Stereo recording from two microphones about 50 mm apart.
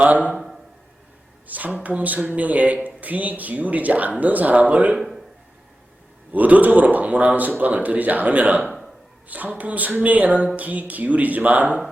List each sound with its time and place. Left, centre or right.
0.0 s a man's voice: right
1.5 s speech: right
4.9 s a man's voice: centre
6.3 s speech: right
8.6 s a sound: centre
9.3 s speech: right